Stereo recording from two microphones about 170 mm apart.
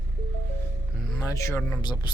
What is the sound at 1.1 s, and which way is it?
Speech, 15° left (ahead or behind).